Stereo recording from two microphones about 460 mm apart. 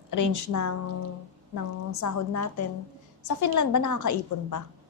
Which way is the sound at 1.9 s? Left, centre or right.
Left.